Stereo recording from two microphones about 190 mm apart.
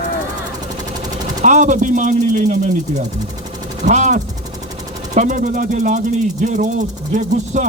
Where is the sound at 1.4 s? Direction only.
40° right (ahead or behind).